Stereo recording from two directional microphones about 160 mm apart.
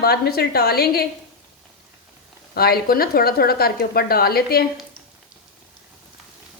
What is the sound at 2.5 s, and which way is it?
Speech, 70° left (ahead or behind).